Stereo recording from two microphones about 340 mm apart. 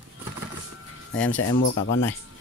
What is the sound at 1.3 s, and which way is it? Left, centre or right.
Speech, left.